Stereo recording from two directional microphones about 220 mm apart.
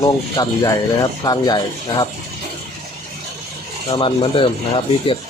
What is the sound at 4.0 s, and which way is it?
Speech, 25° left (ahead or behind).